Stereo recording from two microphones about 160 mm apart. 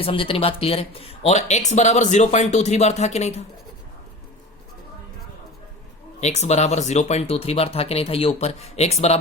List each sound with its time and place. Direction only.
0.0 s speech: 35° left (ahead or behind)
6.1 s speech: 45° left (ahead or behind)